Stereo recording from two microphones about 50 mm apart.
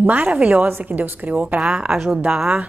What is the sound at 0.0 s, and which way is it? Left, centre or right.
A woman's voice, right.